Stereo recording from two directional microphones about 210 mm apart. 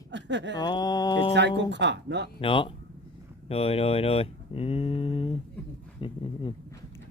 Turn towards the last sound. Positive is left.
turn(degrees=25)  # may be behind; listen again after turning